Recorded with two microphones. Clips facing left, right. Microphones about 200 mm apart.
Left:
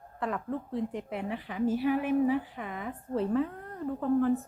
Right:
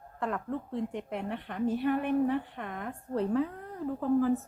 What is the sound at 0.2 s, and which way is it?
Speech, centre (ahead or behind).